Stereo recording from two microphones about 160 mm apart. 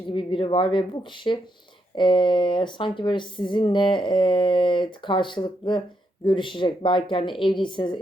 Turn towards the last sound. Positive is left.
turn(degrees=30)  # may be behind; listen again after turning